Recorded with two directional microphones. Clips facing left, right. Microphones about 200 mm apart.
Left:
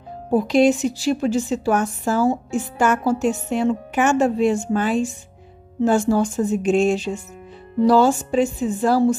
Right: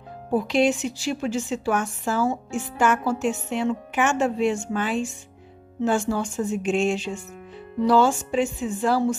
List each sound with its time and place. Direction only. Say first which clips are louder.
0.3 s a woman's voice: left 5 dB; 40° left (ahead or behind)